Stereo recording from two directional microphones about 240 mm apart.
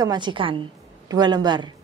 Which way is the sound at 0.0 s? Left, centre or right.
Centre.